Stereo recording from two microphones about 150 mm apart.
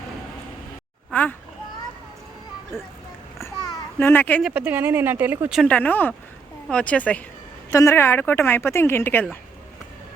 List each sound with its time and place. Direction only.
1.1 s a child's voice: 10° left (ahead or behind)
3.9 s a woman's voice: 15° left (ahead or behind)
4.4 s speech: 10° right (ahead or behind)
5.6 s a woman's voice: 10° left (ahead or behind)
7.7 s a woman's voice: 20° left (ahead or behind)